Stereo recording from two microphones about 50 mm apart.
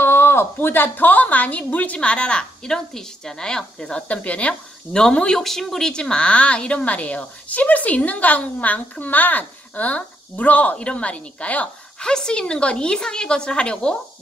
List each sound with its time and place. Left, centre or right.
0.0 s a woman's voice: left; by 4.0 s centre
4.1 s a woman's voice: left
5.4 s a woman's voice: centre; by 11.7 s left
12.0 s a woman's voice: centre